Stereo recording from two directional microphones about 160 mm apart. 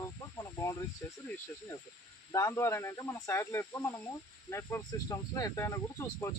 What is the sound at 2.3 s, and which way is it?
Speech, 20° left (ahead or behind).